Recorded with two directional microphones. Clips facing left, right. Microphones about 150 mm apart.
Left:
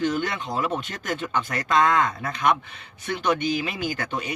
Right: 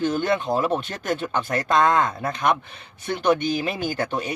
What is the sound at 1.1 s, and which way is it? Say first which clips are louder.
Speech: right 3 dB; 30° right (ahead or behind).